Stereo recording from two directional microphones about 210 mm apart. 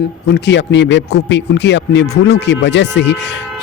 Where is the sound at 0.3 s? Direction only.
55° left (ahead or behind).